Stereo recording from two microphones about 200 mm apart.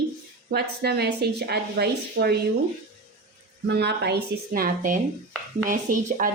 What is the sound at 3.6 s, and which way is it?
A woman's voice, 55° right (ahead or behind).